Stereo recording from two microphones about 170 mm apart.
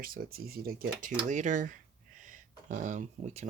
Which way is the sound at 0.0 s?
60° right (ahead or behind).